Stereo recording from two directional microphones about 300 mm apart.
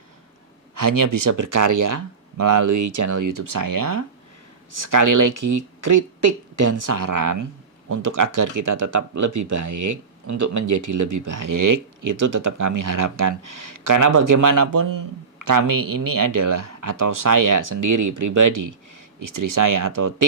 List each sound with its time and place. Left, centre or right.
0.8 s speech: right